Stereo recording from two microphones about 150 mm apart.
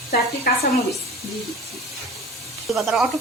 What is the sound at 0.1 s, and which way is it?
Speech, 90° left.